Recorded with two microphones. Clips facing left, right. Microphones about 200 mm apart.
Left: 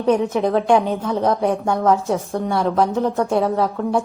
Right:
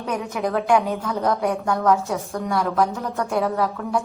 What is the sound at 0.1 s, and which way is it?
A woman's voice, 30° left (ahead or behind).